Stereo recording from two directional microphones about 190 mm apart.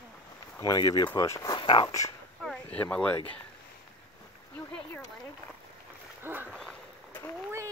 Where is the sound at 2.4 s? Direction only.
5° left (ahead or behind).